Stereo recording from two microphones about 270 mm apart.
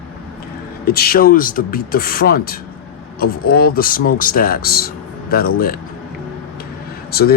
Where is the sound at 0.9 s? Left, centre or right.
Left.